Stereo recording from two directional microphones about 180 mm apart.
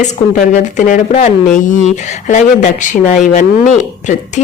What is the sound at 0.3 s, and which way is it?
Speech, 45° left (ahead or behind).